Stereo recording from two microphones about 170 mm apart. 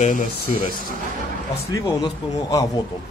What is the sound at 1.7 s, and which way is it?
Speech, 20° left (ahead or behind).